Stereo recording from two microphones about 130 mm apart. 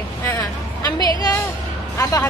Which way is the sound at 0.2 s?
20° left (ahead or behind).